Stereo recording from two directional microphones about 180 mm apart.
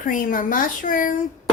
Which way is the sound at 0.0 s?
45° left (ahead or behind).